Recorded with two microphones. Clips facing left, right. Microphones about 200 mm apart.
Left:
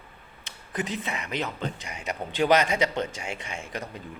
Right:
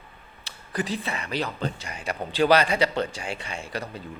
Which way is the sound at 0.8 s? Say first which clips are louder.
Right 2 dB; 20° left (ahead or behind).